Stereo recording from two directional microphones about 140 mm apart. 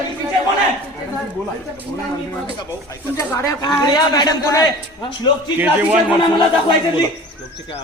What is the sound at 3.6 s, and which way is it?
A man's voice, 30° left (ahead or behind).